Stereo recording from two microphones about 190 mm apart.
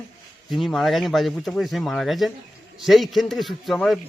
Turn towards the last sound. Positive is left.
turn(degrees=0)  # may be behind; listen again after turning